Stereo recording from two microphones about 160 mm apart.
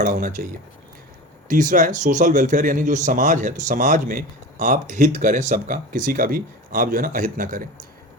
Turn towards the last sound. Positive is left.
turn(degrees=-55)  # may be behind; listen again after turning